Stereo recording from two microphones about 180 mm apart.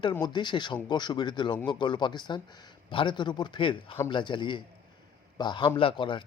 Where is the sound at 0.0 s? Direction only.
25° left (ahead or behind).